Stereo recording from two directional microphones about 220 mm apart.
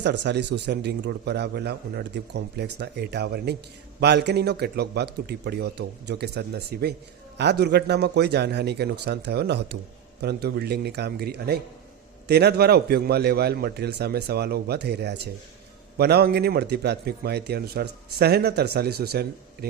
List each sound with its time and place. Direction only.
0.0 s a man's voice: 50° right (ahead or behind)